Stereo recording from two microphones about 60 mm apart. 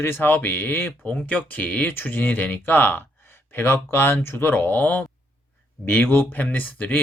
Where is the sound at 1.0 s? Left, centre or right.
Left.